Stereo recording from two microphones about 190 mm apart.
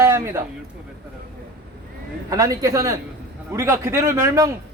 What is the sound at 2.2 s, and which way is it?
A man's voice, 20° right (ahead or behind).